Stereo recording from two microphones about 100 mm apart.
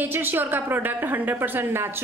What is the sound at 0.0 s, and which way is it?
A woman's voice, 20° right (ahead or behind).